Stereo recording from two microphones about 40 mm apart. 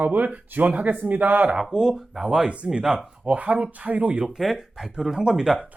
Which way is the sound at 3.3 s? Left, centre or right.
Right.